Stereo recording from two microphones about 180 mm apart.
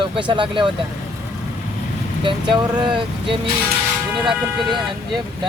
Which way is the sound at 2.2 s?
25° right (ahead or behind).